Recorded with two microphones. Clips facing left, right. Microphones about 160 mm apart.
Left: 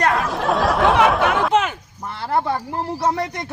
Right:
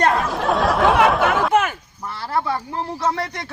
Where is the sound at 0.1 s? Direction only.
Centre (ahead or behind).